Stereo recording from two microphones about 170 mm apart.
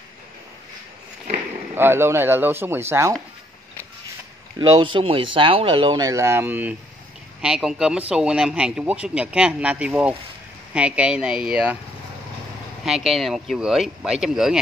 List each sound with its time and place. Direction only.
1.8 s speech: 15° right (ahead or behind)
4.6 s speech: 25° right (ahead or behind); by 11.8 s 5° right (ahead or behind)
12.8 s speech: centre (ahead or behind)